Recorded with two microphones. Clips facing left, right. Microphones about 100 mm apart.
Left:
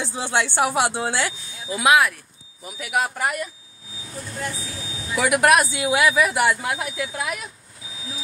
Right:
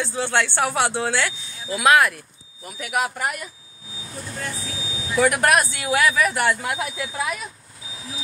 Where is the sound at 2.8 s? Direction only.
5° left (ahead or behind).